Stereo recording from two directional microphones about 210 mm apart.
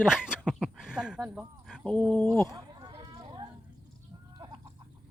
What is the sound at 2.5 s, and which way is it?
Sheep, 20° right (ahead or behind).